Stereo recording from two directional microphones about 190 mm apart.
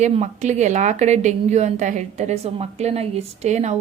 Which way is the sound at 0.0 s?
35° right (ahead or behind).